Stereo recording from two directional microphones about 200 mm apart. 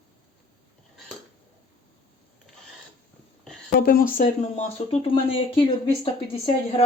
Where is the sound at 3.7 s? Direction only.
50° left (ahead or behind).